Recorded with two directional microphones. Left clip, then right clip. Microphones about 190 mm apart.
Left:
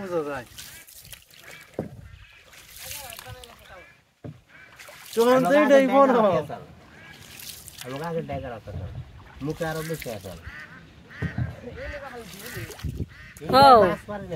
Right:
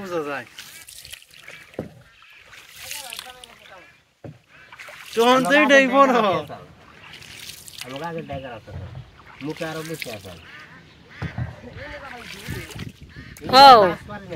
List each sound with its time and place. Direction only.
0.1 s speech: 5° right (ahead or behind)
1.1 s a sound: 35° left (ahead or behind)
3.1 s splash: 40° left (ahead or behind)
5.2 s speech: 10° right (ahead or behind)
7.7 s speech: 40° left (ahead or behind)
9.5 s speech: 30° left (ahead or behind)
12.3 s boat: 35° left (ahead or behind)
13.5 s speech: 5° left (ahead or behind)